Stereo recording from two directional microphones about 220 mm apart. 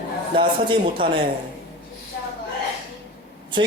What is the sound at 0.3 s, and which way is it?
Speech, 25° right (ahead or behind).